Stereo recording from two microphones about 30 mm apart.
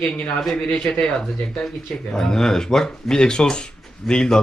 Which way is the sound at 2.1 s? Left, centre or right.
Left.